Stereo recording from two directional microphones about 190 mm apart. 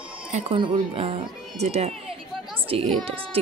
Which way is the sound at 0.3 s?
35° right (ahead or behind).